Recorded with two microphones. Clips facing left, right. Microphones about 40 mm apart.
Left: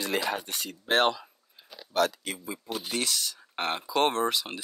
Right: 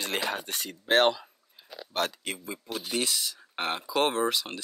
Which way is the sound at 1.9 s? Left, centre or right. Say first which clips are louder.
Left 4 dB; right.